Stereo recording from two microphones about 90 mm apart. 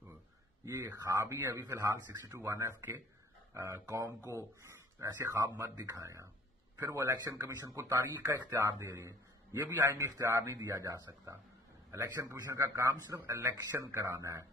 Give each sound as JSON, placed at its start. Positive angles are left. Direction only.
{"t": 0.8, "sound": "speech", "side_deg": -45}
{"t": 1.2, "sound": "a man's voice", "side_deg": -30}
{"t": 13.7, "sound": "speech", "side_deg": -25}